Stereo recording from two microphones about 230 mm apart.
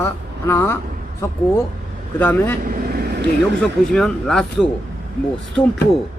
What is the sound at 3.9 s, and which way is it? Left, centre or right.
Speech, centre.